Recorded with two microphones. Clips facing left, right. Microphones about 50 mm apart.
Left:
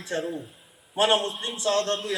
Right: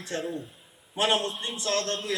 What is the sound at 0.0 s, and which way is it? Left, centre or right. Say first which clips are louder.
A man's voice: left 2 dB; centre.